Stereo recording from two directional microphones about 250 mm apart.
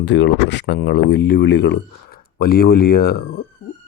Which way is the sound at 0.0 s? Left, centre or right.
Left.